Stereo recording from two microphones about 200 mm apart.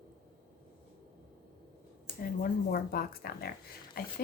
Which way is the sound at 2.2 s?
45° left (ahead or behind).